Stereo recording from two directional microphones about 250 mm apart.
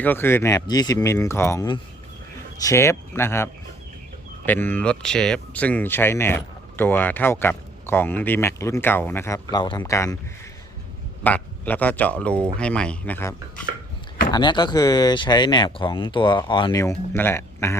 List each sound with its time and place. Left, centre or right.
0.0 s speech: centre
11.2 s speech: centre